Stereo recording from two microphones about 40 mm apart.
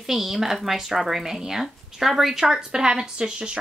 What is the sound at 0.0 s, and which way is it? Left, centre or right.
A woman's voice, centre.